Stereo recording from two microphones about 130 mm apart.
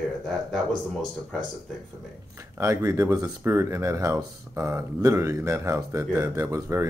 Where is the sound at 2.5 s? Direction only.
20° right (ahead or behind).